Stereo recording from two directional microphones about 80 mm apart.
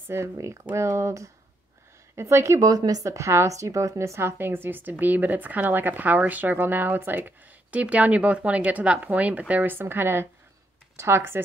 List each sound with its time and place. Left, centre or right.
0.1 s speech: right
2.7 s a woman's voice: right